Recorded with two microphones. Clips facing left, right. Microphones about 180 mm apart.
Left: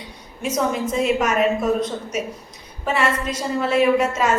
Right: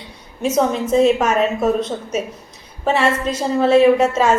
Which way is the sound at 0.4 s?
25° right (ahead or behind).